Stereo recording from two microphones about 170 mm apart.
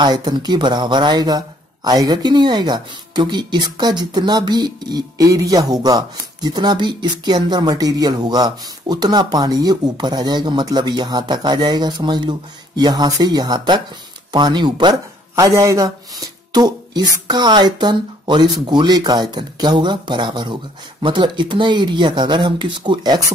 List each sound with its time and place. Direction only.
0.0 s speech: 25° right (ahead or behind)